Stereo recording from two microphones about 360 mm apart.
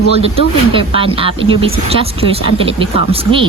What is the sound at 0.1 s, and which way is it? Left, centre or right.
A woman's voice, centre.